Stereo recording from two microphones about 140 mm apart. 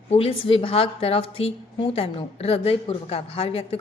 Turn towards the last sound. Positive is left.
turn(degrees=45)  # may be behind; listen again after turning